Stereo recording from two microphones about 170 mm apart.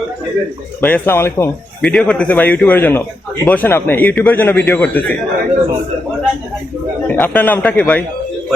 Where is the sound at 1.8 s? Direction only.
5° left (ahead or behind).